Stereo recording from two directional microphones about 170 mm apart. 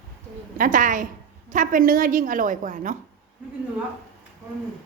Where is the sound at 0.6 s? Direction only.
50° right (ahead or behind).